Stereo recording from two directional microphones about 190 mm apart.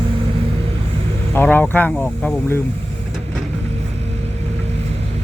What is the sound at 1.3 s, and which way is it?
Vehicle, 10° left (ahead or behind).